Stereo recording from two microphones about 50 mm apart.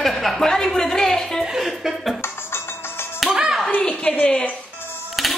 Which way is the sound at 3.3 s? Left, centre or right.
Centre.